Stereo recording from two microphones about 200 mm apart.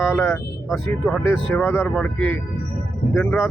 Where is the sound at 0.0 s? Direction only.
Centre (ahead or behind).